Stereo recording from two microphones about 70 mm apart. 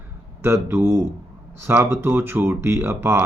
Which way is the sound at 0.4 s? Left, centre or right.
Right.